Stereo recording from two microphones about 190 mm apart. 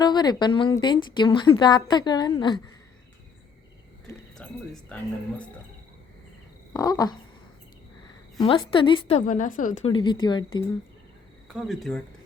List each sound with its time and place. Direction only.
0.0 s speech: 20° left (ahead or behind)
4.4 s speech: centre (ahead or behind)
6.7 s frog: 20° left (ahead or behind)
8.4 s speech: 25° left (ahead or behind)
9.2 s a woman's voice: 45° left (ahead or behind)
9.8 s speech: 25° left (ahead or behind)
11.4 s speech: centre (ahead or behind)